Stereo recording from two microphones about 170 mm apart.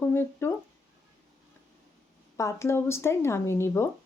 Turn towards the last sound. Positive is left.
turn(degrees=15)  # may be behind; listen again after turning